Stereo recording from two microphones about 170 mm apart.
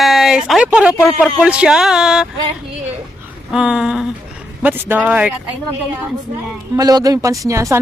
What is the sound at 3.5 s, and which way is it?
Speech, 5° right (ahead or behind).